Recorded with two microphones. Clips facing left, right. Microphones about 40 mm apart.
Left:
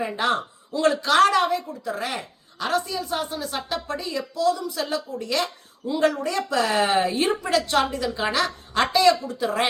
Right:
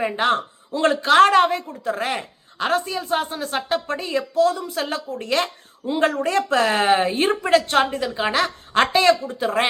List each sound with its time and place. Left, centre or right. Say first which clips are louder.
0.0 s a woman's voice: right 3 dB; right
8.7 s speech: right 2 dB; right